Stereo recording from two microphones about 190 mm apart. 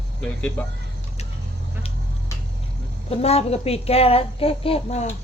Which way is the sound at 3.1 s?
30° left (ahead or behind).